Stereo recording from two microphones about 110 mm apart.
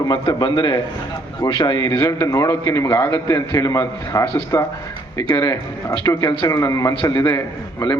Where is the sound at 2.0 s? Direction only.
30° left (ahead or behind).